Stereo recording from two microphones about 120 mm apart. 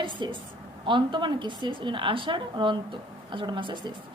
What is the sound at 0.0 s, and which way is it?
A woman's voice, 45° right (ahead or behind).